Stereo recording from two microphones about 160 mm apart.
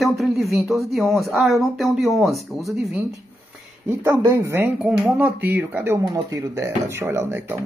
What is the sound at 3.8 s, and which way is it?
Speech, 15° right (ahead or behind).